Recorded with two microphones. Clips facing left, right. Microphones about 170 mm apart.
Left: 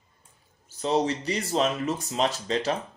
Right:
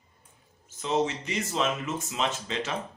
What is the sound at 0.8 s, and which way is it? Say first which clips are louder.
Speech: left 2 dB; 35° left (ahead or behind).